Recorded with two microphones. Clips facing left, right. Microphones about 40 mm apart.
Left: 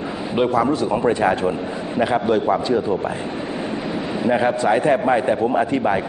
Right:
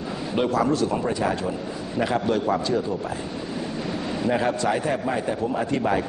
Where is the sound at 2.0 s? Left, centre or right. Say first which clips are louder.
Left 5 dB; left.